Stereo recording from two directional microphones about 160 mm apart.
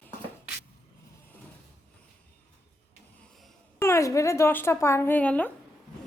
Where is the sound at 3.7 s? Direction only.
15° left (ahead or behind).